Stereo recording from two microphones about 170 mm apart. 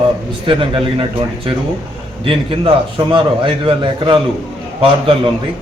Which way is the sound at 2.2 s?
30° right (ahead or behind).